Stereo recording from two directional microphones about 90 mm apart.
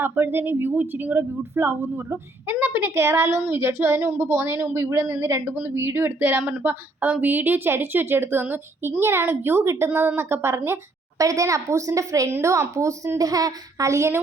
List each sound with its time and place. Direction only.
0.0 s a woman's voice: 25° right (ahead or behind)
11.2 s a child's voice: 40° right (ahead or behind)